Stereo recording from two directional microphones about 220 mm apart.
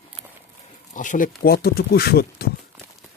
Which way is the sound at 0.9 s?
35° left (ahead or behind).